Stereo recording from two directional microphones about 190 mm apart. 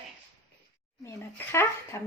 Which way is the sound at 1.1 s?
15° left (ahead or behind).